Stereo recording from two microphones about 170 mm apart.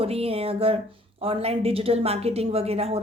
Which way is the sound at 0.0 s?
35° right (ahead or behind).